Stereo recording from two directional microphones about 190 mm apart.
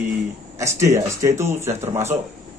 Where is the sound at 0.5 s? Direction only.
15° right (ahead or behind).